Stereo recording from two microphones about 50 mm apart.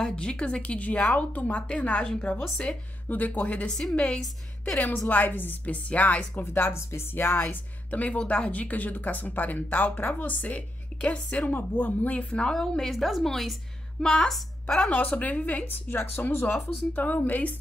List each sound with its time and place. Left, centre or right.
0.0 s a woman's voice: centre
3.1 s speech: left
3.6 s a woman's voice: centre
3.9 s a woman's voice: left
6.4 s speech: left
7.9 s a woman's voice: left
12.3 s a woman's voice: centre
12.5 s a woman's voice: centre
14.9 s speech: left
16.0 s speech: left